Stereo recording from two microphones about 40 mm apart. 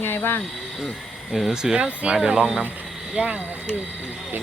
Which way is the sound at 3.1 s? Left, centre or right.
Right.